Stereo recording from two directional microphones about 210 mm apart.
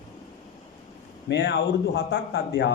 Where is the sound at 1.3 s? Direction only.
55° left (ahead or behind).